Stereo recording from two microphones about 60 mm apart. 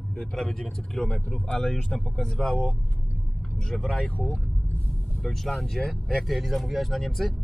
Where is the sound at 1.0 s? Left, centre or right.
Left.